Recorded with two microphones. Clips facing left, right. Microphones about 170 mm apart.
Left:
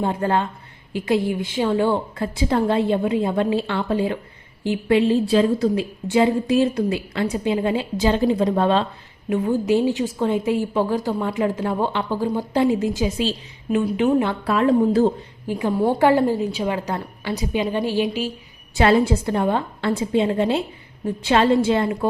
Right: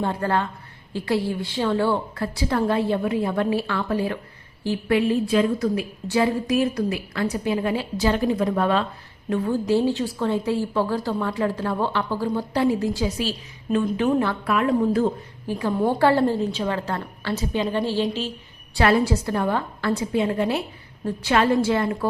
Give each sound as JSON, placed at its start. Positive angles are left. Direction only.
{"t": 0.0, "sound": "a woman's voice", "side_deg": 20}
{"t": 9.3, "sound": "a woman's voice", "side_deg": 20}
{"t": 14.4, "sound": "a woman's voice", "side_deg": 30}
{"t": 15.4, "sound": "a woman's voice", "side_deg": 20}
{"t": 18.8, "sound": "a woman's voice", "side_deg": 25}